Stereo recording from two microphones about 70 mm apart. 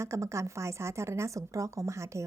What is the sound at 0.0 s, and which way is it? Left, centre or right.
A woman's voice, right.